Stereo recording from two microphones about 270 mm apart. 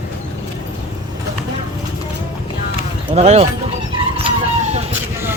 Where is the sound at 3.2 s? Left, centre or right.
Right.